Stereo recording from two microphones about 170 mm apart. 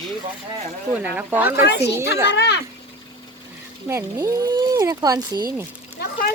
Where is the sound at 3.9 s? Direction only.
20° right (ahead or behind).